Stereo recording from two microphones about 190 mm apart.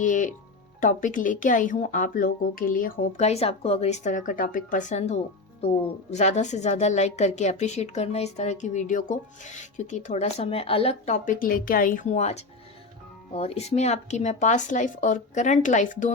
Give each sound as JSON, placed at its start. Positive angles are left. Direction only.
{"t": 0.0, "sound": "music", "side_deg": 40}
{"t": 0.8, "sound": "a woman's voice", "side_deg": 45}